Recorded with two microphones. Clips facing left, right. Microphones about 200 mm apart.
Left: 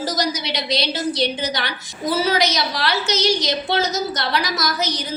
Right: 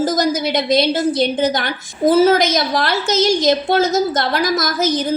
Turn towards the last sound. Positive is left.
turn(degrees=-50)  # may be behind; listen again after turning